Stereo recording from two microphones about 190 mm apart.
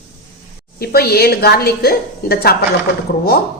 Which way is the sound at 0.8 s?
55° left (ahead or behind).